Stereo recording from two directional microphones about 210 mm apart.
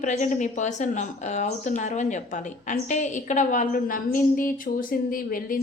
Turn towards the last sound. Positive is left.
turn(degrees=40)  # may be behind; listen again after turning